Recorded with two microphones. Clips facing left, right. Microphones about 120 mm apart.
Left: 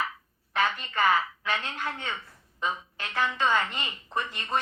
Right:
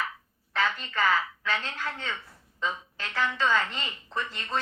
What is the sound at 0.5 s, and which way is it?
A woman's voice, 15° left (ahead or behind).